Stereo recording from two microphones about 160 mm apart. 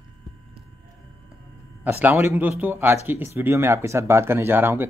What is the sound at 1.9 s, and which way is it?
Speech, 15° right (ahead or behind).